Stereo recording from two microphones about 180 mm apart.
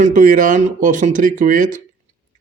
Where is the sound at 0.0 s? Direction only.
50° right (ahead or behind).